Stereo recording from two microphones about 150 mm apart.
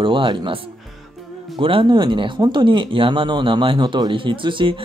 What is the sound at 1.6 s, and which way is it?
Speech, 35° right (ahead or behind).